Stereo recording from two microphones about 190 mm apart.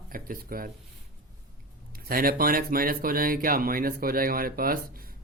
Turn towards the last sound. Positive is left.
turn(degrees=-50)  # may be behind; listen again after turning